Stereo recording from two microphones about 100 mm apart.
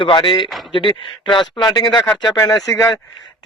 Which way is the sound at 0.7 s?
55° left (ahead or behind).